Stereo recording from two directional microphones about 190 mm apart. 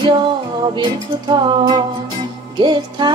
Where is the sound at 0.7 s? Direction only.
25° right (ahead or behind).